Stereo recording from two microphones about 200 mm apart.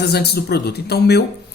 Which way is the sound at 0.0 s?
55° left (ahead or behind).